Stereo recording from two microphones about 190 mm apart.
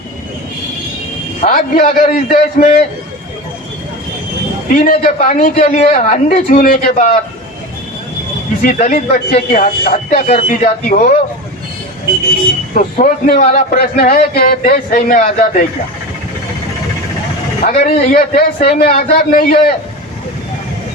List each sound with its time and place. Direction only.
1.5 s speech: 50° left (ahead or behind)
4.7 s speech: 45° left (ahead or behind)
8.6 s speech: 45° left (ahead or behind)
12.7 s speech: 45° left (ahead or behind)
13.5 s speech: 40° left (ahead or behind)
13.7 s speech: 50° left (ahead or behind)
17.7 s speech: 50° left (ahead or behind)